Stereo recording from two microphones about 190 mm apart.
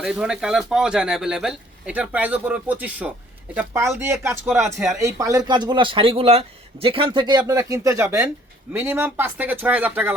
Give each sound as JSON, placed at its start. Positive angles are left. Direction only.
{"t": 0.0, "sound": "speech", "side_deg": -5}